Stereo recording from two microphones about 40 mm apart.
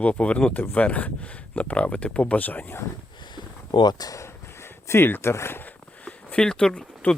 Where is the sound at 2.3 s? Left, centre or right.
Left.